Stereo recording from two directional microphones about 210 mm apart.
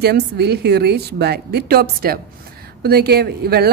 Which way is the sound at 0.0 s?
50° right (ahead or behind).